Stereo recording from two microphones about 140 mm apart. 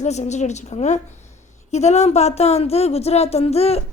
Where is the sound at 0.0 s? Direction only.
55° left (ahead or behind).